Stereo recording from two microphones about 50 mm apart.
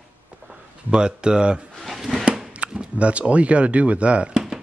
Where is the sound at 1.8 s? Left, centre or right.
Centre.